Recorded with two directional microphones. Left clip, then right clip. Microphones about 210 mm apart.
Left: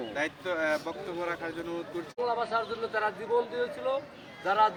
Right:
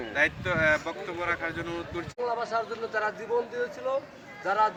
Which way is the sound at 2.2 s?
10° right (ahead or behind).